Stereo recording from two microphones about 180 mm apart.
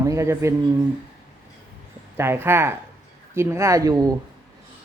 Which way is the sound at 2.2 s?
15° right (ahead or behind).